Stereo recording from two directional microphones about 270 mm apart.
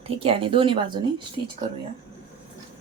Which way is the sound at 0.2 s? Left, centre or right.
Centre.